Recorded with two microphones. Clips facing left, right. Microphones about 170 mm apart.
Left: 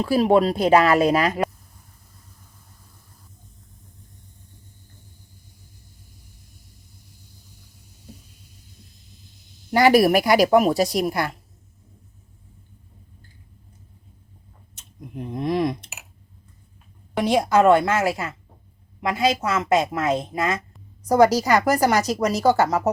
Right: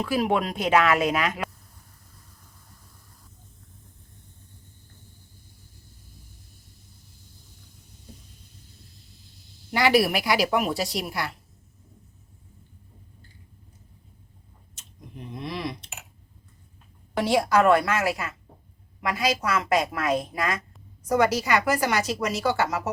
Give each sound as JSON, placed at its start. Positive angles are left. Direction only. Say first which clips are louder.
{"t": 0.0, "sound": "a woman's voice", "louder": "left 7 dB", "side_deg": 35}
{"t": 9.7, "sound": "a woman's voice", "louder": "left 6 dB", "side_deg": 45}
{"t": 14.8, "sound": "a sound", "louder": "left 8 dB", "side_deg": 55}
{"t": 17.2, "sound": "a woman's voice", "louder": "left 3 dB", "side_deg": 20}
{"t": 21.1, "sound": "a woman's voice", "louder": "left 6 dB", "side_deg": 40}